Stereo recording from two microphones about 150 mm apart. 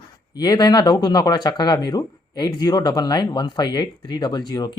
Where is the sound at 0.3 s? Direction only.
25° left (ahead or behind).